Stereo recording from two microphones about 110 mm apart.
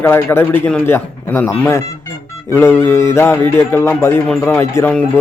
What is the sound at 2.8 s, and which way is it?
A man's voice, 25° left (ahead or behind).